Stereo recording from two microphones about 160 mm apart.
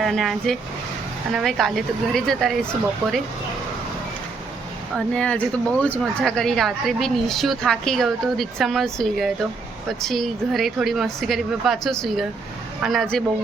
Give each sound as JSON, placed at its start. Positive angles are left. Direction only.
{"t": 0.0, "sound": "speech", "side_deg": 0}
{"t": 4.9, "sound": "speech", "side_deg": 5}